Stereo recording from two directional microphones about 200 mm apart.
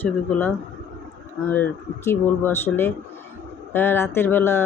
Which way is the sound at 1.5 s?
10° left (ahead or behind).